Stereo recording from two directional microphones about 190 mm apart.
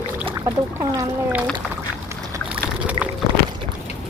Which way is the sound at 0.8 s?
15° right (ahead or behind).